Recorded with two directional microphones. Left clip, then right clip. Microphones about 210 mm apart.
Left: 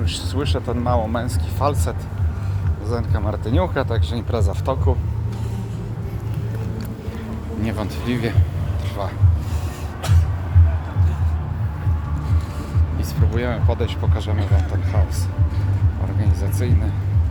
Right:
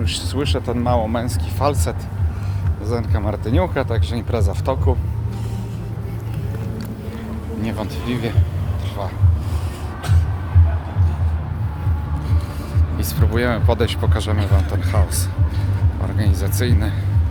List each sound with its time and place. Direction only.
0.0 s speech: 10° right (ahead or behind)
7.6 s speech: 10° left (ahead or behind)
13.0 s speech: 15° right (ahead or behind)
16.2 s speech: 15° right (ahead or behind)